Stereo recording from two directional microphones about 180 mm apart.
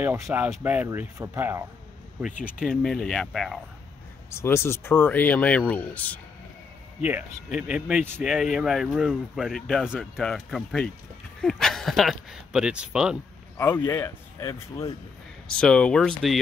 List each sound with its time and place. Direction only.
0.0 s speech: 10° right (ahead or behind)
2.4 s speech: centre (ahead or behind)
4.3 s speech: 15° left (ahead or behind)
7.0 s speech: 10° right (ahead or behind)
13.6 s speech: 15° left (ahead or behind)
15.4 s speech: 5° left (ahead or behind)